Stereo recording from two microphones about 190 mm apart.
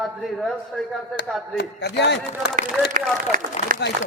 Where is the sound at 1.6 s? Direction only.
60° left (ahead or behind).